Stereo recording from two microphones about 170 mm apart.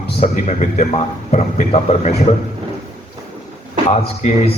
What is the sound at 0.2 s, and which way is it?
Speech, 40° left (ahead or behind).